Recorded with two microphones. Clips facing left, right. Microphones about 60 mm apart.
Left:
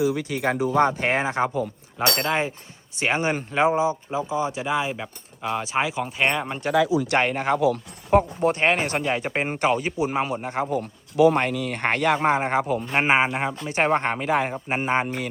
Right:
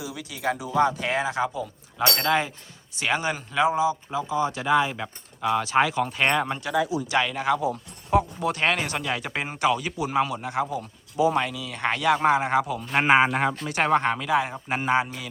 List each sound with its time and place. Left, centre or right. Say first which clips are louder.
0.0 s speech: left 7 dB; left
2.1 s speech: even; left
7.1 s speech: left 2 dB; left
10.7 s speech: left 5 dB; left
12.9 s speech: right 3 dB; centre
13.7 s speech: left 2 dB; left
14.7 s speech: right 1 dB; left